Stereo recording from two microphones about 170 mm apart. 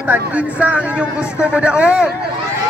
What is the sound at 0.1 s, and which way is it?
A man's voice, 10° right (ahead or behind).